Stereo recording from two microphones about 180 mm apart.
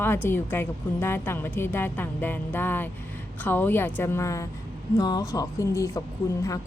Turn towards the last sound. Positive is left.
turn(degrees=15)  # may be behind; listen again after turning